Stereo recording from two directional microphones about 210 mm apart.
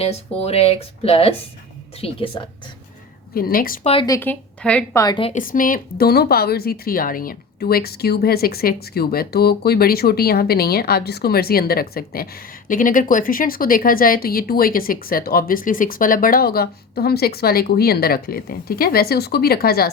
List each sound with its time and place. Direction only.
0.0 s speech: 30° left (ahead or behind)
3.3 s speech: 45° left (ahead or behind)
3.8 s speech: 20° left (ahead or behind); by 5.0 s 5° left (ahead or behind)
5.0 s speech: 25° left (ahead or behind)
5.3 s speech: 40° left (ahead or behind)